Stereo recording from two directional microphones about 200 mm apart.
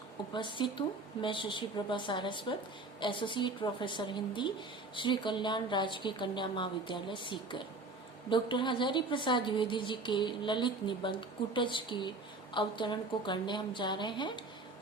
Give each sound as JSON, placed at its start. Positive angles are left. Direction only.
{"t": 0.3, "sound": "a woman's voice", "side_deg": 25}